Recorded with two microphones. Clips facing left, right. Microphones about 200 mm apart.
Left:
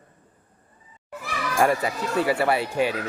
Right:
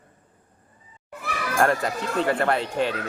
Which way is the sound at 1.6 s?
10° left (ahead or behind).